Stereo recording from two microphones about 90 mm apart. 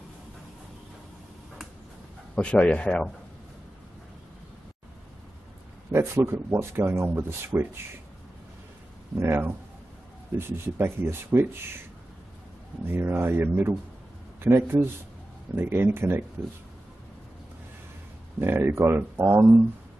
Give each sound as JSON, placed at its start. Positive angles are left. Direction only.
{"t": 2.3, "sound": "speech", "side_deg": 15}
{"t": 5.9, "sound": "speech", "side_deg": -30}
{"t": 9.2, "sound": "speech", "side_deg": -25}
{"t": 12.8, "sound": "speech", "side_deg": -25}
{"t": 18.4, "sound": "speech", "side_deg": -25}